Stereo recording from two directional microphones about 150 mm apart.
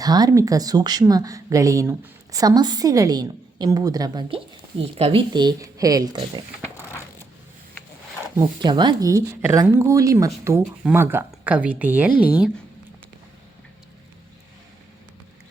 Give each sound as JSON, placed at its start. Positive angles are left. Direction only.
{"t": 0.0, "sound": "speech", "side_deg": -25}
{"t": 8.6, "sound": "speech", "side_deg": -30}